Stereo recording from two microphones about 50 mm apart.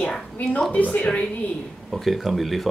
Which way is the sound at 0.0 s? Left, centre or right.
Left.